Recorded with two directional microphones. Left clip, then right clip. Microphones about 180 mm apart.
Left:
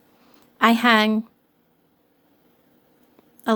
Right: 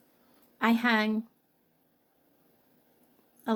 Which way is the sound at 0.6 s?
30° left (ahead or behind).